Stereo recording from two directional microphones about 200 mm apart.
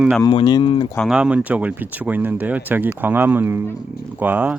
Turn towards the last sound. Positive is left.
turn(degrees=-10)  # may be behind; listen again after turning